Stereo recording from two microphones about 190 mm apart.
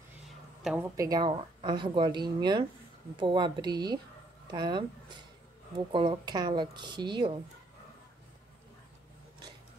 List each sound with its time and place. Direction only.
0.6 s a woman's voice: centre (ahead or behind)
0.9 s speech: 20° right (ahead or behind)